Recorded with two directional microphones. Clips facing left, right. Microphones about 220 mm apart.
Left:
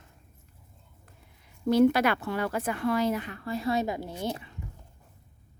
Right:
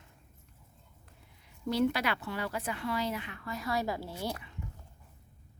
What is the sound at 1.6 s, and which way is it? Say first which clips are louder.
A woman's voice: left 8 dB; 50° left (ahead or behind).